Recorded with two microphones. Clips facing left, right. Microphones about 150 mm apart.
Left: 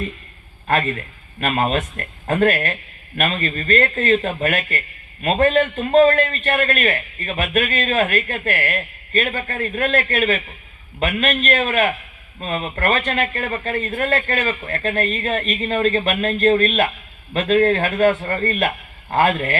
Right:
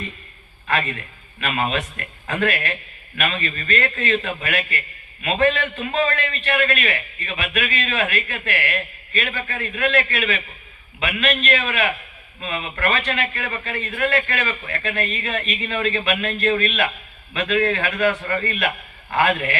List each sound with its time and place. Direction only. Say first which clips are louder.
0.7 s a man's voice: left 4 dB; 45° left (ahead or behind)